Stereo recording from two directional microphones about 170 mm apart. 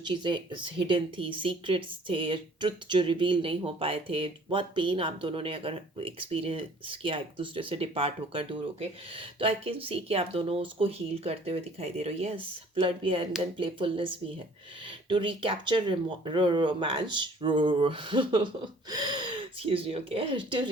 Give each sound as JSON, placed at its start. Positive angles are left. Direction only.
{"t": 0.0, "sound": "speech", "side_deg": -25}